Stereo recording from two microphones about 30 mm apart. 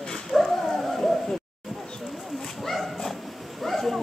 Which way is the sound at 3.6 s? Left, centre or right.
Centre.